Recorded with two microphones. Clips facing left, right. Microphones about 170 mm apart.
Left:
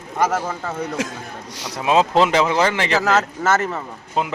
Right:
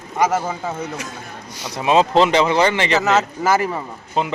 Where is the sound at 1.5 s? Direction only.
85° left.